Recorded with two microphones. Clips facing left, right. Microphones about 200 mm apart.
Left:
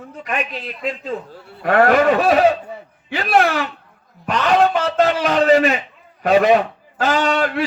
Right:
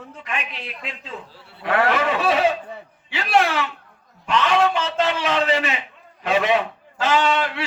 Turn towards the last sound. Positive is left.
turn(degrees=40)  # may be behind; listen again after turning